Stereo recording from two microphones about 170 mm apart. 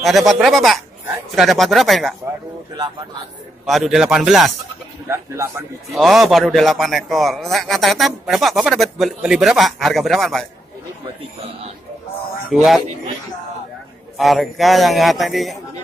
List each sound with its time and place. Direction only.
0.0 s a man's voice: centre (ahead or behind)
3.6 s a man's voice: centre (ahead or behind)
5.0 s speech: 15° right (ahead or behind)
5.9 s a man's voice: centre (ahead or behind)
14.1 s a man's voice: centre (ahead or behind)